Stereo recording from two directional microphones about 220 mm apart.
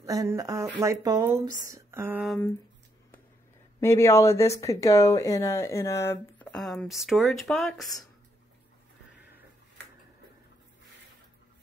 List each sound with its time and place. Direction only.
0.0 s speech: 15° right (ahead or behind)
3.8 s speech: 10° left (ahead or behind)